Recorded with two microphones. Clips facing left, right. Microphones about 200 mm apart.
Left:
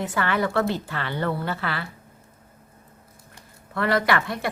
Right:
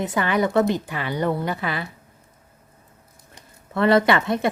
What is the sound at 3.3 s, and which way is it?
Speech, 25° right (ahead or behind).